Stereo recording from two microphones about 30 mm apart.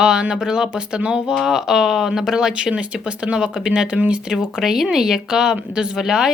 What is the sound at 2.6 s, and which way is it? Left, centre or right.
Speech, right.